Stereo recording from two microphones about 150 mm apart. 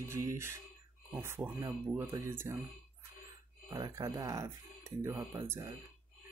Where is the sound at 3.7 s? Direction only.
25° right (ahead or behind).